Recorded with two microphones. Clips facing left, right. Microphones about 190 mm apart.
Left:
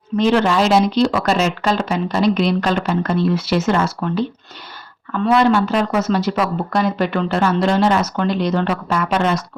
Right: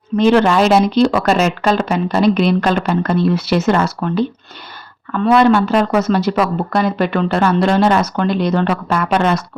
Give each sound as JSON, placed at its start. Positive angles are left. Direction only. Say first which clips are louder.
{"t": 0.2, "sound": "speech", "louder": "right 3 dB", "side_deg": -55}
{"t": 5.2, "sound": "speech", "louder": "right 3 dB", "side_deg": -60}